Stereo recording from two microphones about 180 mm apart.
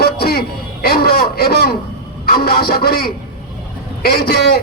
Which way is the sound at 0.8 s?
60° left (ahead or behind).